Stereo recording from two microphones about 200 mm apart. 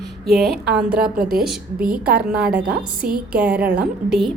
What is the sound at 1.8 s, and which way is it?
Speech, 45° right (ahead or behind).